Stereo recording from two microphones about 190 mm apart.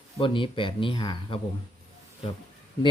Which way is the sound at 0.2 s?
25° left (ahead or behind).